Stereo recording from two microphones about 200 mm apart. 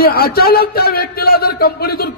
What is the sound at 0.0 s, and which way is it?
A man's voice, 50° left (ahead or behind).